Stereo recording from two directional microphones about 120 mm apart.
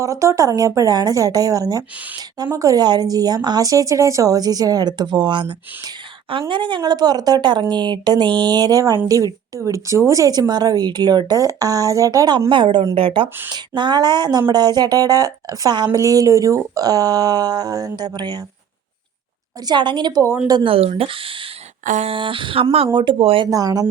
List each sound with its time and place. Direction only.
0.0 s speech: 25° right (ahead or behind); by 13.2 s 50° right (ahead or behind)
13.5 s speech: 35° right (ahead or behind)
19.6 s speech: 40° right (ahead or behind)
20.7 s speech: 55° right (ahead or behind)
21.8 s a sound: 90° right
22.1 s speech: 45° right (ahead or behind)
22.9 s speech: 40° right (ahead or behind)
23.5 s speech: 30° right (ahead or behind)